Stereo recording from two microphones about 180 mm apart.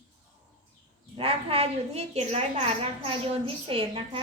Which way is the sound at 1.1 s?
30° right (ahead or behind).